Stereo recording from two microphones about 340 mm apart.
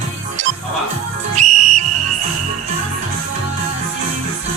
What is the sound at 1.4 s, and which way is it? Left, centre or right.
Whistle, right.